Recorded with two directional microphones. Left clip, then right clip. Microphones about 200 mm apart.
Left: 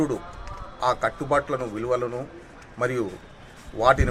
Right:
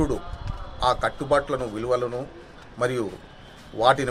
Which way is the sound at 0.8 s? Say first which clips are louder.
Right 1 dB; 10° right (ahead or behind).